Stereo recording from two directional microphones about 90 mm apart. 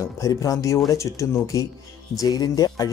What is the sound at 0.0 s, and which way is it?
Speech, 40° left (ahead or behind).